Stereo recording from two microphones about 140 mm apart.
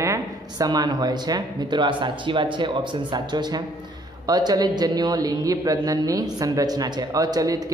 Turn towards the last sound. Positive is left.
turn(degrees=-25)  # may be behind; listen again after turning